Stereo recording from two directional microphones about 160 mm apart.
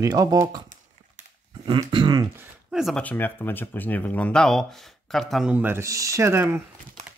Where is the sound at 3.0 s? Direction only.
10° left (ahead or behind).